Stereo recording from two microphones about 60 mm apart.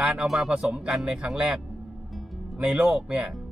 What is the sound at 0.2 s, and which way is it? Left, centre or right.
Speech, centre.